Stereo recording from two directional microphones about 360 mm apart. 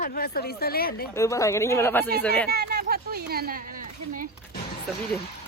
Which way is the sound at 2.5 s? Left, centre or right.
Right.